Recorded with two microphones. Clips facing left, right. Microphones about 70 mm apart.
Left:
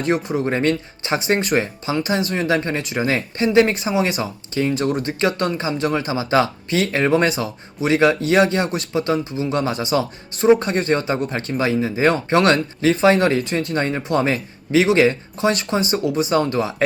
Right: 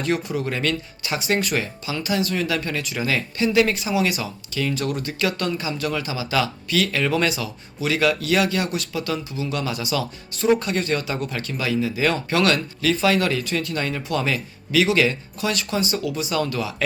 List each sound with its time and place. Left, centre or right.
0.2 s speech: left